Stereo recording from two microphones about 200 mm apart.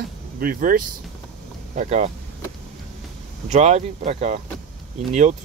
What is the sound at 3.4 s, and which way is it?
Speech, 35° right (ahead or behind).